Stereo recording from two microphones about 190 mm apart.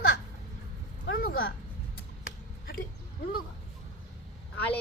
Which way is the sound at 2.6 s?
50° left (ahead or behind).